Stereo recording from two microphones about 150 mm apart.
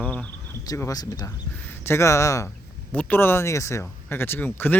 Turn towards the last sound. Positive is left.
turn(degrees=15)  # may be behind; listen again after turning